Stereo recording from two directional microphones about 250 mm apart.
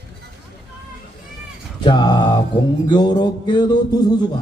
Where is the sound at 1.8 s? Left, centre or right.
Centre.